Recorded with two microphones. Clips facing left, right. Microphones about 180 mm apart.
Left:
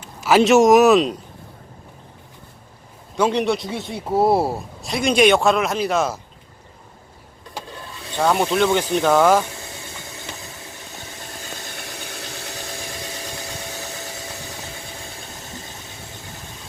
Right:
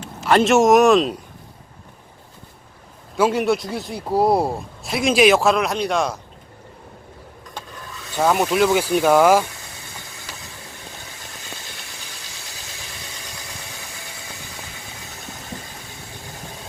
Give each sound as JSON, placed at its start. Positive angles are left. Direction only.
{"t": 0.3, "sound": "speech", "side_deg": 0}
{"t": 3.2, "sound": "speech", "side_deg": -5}
{"t": 7.7, "sound": "vehicle", "side_deg": 30}
{"t": 8.2, "sound": "speech", "side_deg": -5}
{"t": 11.7, "sound": "engine", "side_deg": 55}
{"t": 13.1, "sound": "a sound", "side_deg": 30}